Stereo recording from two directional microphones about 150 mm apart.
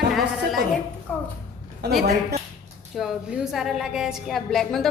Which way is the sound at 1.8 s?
90° right.